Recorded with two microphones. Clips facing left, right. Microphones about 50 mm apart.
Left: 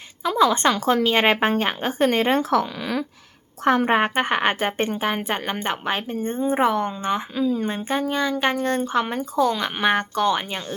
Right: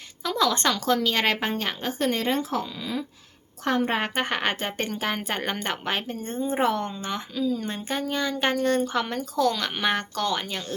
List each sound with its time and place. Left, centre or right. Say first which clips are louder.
0.2 s a woman's voice: left 5 dB; left
3.6 s a woman's voice: left 6 dB; left; by 7.2 s centre
7.3 s a woman's voice: left 1 dB; left
8.1 s speech: left 1 dB; centre